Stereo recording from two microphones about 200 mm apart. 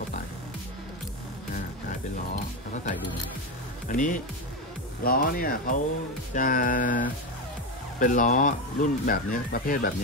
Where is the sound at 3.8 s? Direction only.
40° left (ahead or behind).